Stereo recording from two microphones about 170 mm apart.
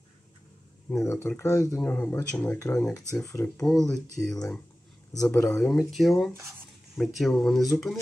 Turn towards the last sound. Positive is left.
turn(degrees=0)  # may be behind; listen again after turning